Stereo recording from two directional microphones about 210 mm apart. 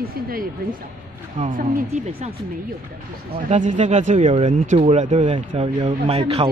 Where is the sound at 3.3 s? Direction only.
35° right (ahead or behind).